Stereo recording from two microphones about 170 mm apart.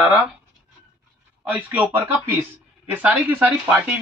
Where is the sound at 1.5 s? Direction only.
10° right (ahead or behind).